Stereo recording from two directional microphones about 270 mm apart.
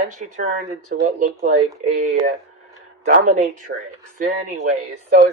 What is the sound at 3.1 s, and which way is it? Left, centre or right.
Speech, right.